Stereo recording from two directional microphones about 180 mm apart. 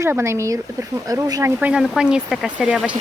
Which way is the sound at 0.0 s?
15° right (ahead or behind).